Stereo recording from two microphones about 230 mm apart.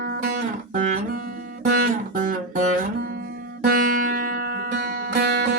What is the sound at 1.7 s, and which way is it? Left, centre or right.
Music, right.